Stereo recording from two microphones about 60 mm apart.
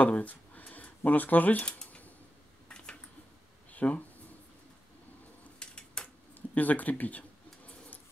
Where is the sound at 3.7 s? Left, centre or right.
Left.